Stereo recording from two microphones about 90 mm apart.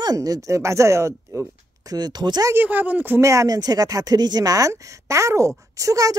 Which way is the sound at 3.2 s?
35° right (ahead or behind).